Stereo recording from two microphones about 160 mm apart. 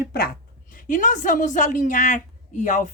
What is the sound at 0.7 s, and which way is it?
Speech, 55° left (ahead or behind).